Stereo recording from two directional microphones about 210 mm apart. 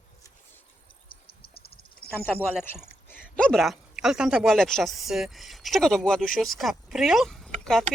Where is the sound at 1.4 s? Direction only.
45° left (ahead or behind).